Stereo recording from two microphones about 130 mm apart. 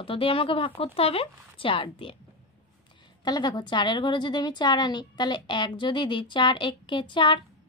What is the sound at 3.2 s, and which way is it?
A woman's voice, 30° left (ahead or behind).